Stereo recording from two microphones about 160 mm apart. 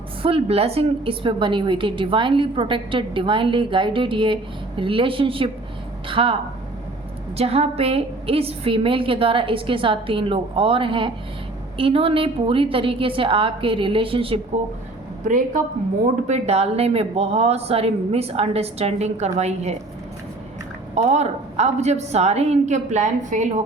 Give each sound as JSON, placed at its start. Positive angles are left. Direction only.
{"t": 0.2, "sound": "a woman's voice", "side_deg": -35}
{"t": 7.3, "sound": "a woman's voice", "side_deg": -40}
{"t": 15.2, "sound": "a woman's voice", "side_deg": -55}
{"t": 16.2, "sound": "a woman's voice", "side_deg": -45}
{"t": 20.9, "sound": "a woman's voice", "side_deg": -45}